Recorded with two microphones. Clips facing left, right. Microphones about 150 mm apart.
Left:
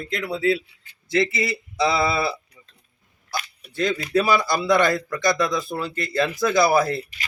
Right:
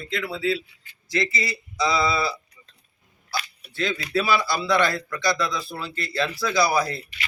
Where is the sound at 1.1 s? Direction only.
60° left (ahead or behind).